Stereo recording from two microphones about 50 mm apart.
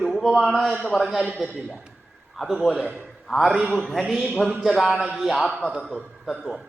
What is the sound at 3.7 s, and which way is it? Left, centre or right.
Speech, centre.